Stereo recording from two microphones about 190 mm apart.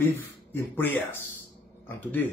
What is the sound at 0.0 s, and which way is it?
Speech, 10° left (ahead or behind).